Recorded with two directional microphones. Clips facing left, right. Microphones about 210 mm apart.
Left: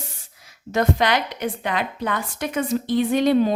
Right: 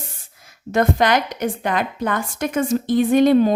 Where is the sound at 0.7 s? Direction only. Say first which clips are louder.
Right 3 dB; 50° right (ahead or behind).